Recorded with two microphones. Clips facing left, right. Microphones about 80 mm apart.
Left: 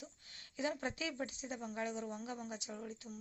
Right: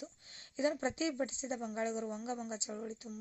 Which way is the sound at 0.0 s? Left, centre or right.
Right.